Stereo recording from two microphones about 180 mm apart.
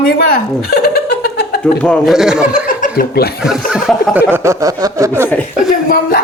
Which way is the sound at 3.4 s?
Centre (ahead or behind).